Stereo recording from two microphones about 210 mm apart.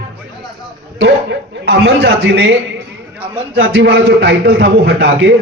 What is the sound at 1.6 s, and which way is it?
Speech, 50° right (ahead or behind).